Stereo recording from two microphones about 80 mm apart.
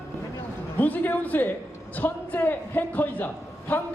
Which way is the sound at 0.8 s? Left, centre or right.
Left.